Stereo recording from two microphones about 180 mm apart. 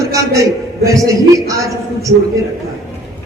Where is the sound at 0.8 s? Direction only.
20° right (ahead or behind).